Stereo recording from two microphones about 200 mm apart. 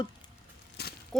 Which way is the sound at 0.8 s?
55° left (ahead or behind).